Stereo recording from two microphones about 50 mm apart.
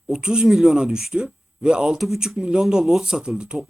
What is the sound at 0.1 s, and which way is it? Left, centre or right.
Speech, centre.